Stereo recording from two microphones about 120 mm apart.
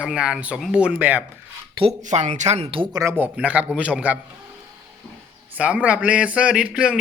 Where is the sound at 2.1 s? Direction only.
85° right; by 2.8 s 50° right (ahead or behind).